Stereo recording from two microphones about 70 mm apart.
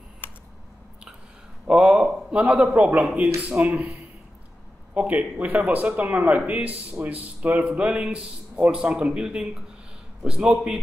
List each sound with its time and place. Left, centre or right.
0.2 s a sound: left
1.7 s a man's voice: centre
4.9 s a man's voice: right